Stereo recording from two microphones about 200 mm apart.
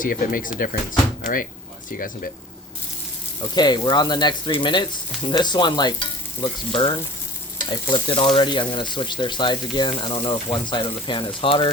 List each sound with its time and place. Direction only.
0.0 s speech: 45° left (ahead or behind)
3.5 s speech: 20° left (ahead or behind)